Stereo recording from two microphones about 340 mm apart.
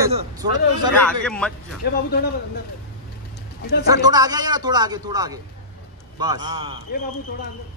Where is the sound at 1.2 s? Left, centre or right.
Centre.